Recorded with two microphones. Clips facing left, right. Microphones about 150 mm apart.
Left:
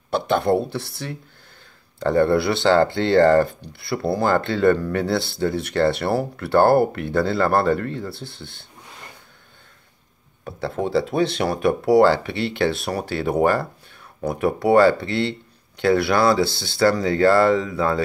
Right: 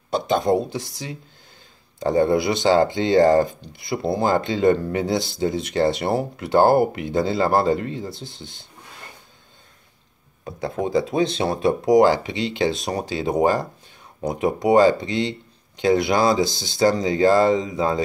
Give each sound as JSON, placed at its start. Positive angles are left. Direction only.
{"t": 0.7, "sound": "speech", "side_deg": -15}
{"t": 10.4, "sound": "speech", "side_deg": -20}